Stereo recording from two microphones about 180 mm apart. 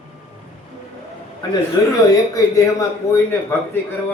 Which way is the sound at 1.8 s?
20° left (ahead or behind).